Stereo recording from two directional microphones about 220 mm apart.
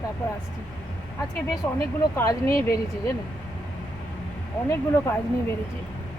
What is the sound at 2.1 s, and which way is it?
Speech, 10° left (ahead or behind).